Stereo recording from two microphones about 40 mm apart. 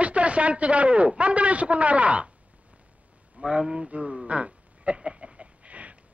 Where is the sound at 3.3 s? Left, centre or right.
Right.